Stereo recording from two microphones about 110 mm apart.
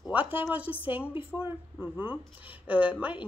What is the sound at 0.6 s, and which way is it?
Speech, 55° left (ahead or behind).